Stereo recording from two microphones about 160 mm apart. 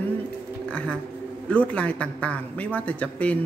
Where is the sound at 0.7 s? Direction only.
5° left (ahead or behind).